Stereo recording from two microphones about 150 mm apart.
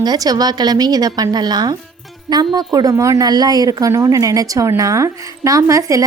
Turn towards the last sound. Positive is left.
turn(degrees=-20)  # may be behind; listen again after turning